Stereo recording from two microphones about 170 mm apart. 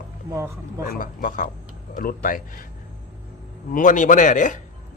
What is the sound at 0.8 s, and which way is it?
Speech, 50° left (ahead or behind).